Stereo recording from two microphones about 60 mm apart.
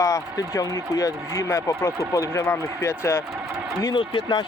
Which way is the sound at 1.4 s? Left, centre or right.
Left.